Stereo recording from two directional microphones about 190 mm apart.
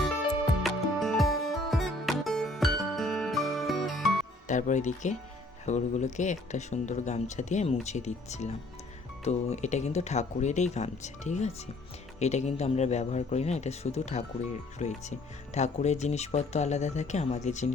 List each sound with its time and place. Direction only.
0.6 s music: centre (ahead or behind)
4.4 s speech: 40° left (ahead or behind)